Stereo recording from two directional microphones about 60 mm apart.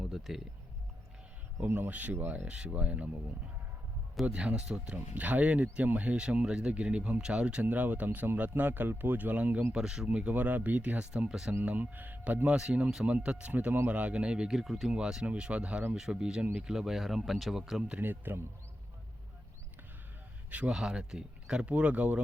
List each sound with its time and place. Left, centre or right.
0.0 s speech: centre
1.6 s speech: right
4.3 s speech: centre
5.1 s speech: right
9.7 s speech: centre
11.6 s speech: right
12.5 s speech: centre
14.9 s speech: centre
16.7 s speech: centre
18.0 s speech: right
20.5 s speech: right
20.7 s speech: centre